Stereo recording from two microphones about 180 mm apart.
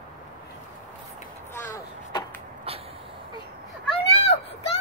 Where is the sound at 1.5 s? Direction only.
15° left (ahead or behind).